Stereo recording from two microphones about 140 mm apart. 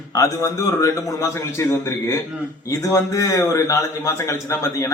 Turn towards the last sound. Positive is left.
turn(degrees=20)  # may be behind; listen again after turning